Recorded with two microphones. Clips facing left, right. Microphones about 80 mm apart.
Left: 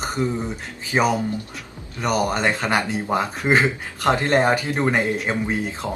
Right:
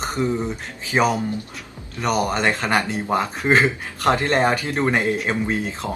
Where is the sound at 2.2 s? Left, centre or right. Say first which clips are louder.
Even; centre.